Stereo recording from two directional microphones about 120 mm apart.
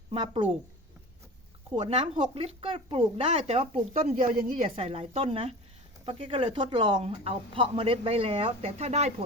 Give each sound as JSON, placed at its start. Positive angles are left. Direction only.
{"t": 0.1, "sound": "speech", "side_deg": -45}
{"t": 1.7, "sound": "speech", "side_deg": -55}